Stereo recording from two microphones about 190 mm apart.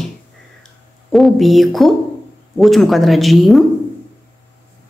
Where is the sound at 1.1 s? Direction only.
Centre (ahead or behind).